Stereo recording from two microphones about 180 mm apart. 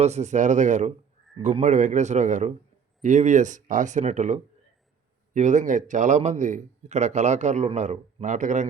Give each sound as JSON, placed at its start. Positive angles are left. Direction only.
{"t": 0.0, "sound": "a man's voice", "side_deg": -40}